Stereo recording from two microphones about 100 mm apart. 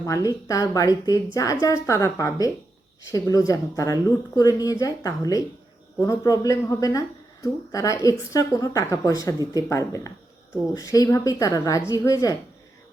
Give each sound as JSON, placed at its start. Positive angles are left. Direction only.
{"t": 0.0, "sound": "a woman's voice", "side_deg": 35}